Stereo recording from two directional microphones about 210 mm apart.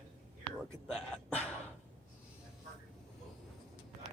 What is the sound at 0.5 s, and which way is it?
Whispering, centre (ahead or behind).